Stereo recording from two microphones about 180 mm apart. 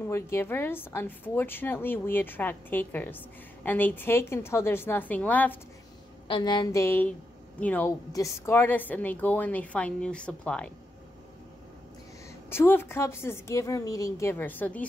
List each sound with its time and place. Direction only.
0.1 s a woman's voice: 15° left (ahead or behind)
6.2 s a woman's voice: 25° left (ahead or behind); by 10.7 s 5° left (ahead or behind)
12.4 s a woman's voice: 10° left (ahead or behind)